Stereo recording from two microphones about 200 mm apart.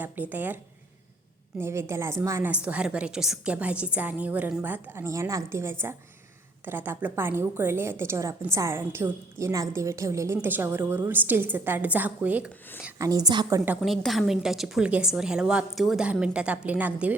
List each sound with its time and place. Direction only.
0.0 s a woman's voice: 10° right (ahead or behind)
13.0 s a woman's voice: 20° right (ahead or behind)
13.7 s a woman's voice: centre (ahead or behind)